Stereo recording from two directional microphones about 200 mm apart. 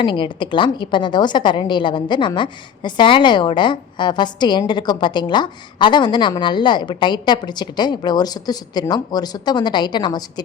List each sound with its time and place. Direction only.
0.0 s a woman's voice: 25° left (ahead or behind)